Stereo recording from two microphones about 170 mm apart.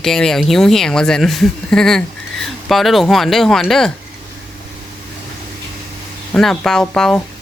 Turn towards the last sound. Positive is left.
turn(degrees=5)  # may be behind; listen again after turning